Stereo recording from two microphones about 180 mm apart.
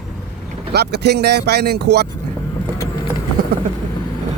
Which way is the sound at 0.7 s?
65° right (ahead or behind).